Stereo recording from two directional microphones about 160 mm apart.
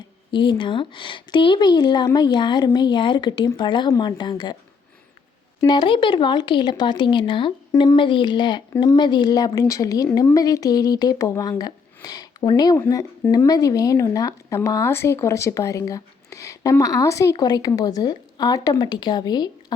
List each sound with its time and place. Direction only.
0.3 s speech: 30° left (ahead or behind)
5.6 s speech: 30° left (ahead or behind)